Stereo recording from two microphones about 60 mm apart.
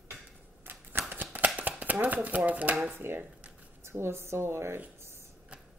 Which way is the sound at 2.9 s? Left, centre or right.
Right.